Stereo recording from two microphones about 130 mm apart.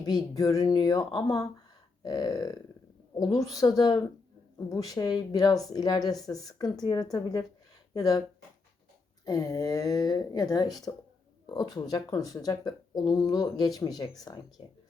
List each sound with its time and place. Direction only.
0.0 s a woman's voice: 30° left (ahead or behind)
9.2 s a woman's voice: 25° left (ahead or behind)